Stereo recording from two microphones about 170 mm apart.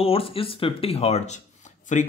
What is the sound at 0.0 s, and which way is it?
Speech, 35° left (ahead or behind).